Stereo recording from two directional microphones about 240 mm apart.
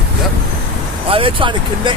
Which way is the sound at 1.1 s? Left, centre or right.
Right.